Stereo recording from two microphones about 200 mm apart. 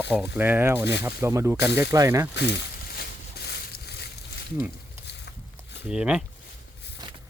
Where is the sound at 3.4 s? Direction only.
55° left (ahead or behind).